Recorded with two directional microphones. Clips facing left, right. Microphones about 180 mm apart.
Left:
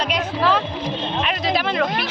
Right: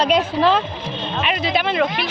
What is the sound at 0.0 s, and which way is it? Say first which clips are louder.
Speech: right 5 dB; 25° right (ahead or behind).